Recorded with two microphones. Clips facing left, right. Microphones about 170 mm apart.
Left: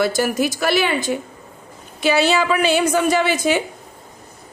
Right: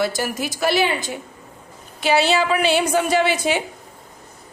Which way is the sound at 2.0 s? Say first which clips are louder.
Left 1 dB; 45° left (ahead or behind).